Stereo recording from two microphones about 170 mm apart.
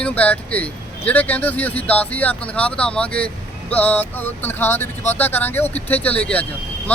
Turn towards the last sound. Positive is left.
turn(degrees=10)  # may be behind; listen again after turning